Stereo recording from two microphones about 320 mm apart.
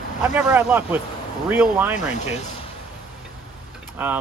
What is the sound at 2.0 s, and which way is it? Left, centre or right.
Speech, left.